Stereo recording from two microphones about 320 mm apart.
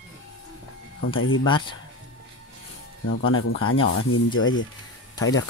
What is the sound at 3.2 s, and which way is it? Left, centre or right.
Speech, left.